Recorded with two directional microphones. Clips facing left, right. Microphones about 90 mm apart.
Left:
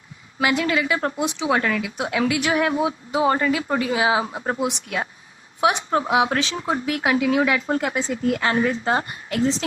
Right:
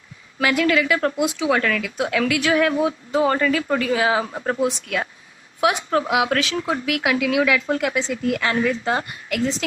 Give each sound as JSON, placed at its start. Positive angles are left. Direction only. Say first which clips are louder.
{"t": 0.3, "sound": "speech", "louder": "right 2 dB", "side_deg": 25}
{"t": 8.3, "sound": "speech", "louder": "even", "side_deg": 25}